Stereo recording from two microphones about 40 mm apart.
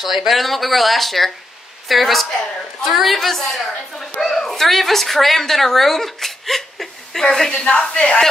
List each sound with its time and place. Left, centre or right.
0.0 s a woman's voice: centre
7.5 s speech: left